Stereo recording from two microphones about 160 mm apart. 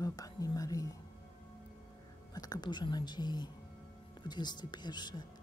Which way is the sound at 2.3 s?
25° left (ahead or behind).